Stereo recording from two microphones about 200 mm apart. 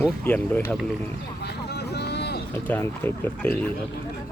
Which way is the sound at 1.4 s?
55° left (ahead or behind).